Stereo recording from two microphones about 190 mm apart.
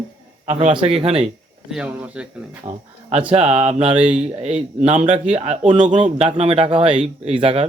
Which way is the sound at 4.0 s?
5° right (ahead or behind).